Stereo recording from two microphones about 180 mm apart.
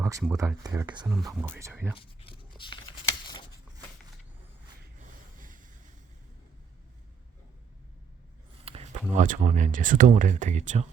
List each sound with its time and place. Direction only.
0.0 s speech: 15° right (ahead or behind)
2.0 s a sound: 30° left (ahead or behind)
5.4 s boat: 50° right (ahead or behind)
8.6 s speech: 35° right (ahead or behind)